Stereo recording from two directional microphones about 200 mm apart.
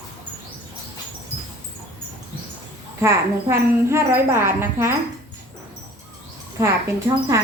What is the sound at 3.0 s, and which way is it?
A woman's voice, 15° right (ahead or behind).